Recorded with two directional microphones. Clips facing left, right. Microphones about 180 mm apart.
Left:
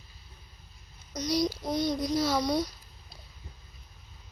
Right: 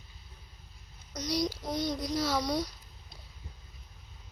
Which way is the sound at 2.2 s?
20° left (ahead or behind).